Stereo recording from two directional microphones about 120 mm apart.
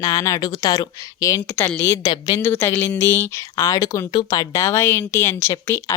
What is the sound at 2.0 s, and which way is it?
Speech, 35° left (ahead or behind).